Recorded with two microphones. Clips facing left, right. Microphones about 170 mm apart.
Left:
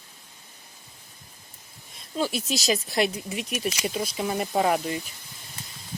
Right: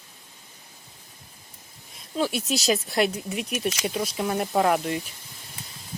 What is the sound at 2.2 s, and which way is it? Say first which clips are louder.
Speech: right 1 dB; centre (ahead or behind).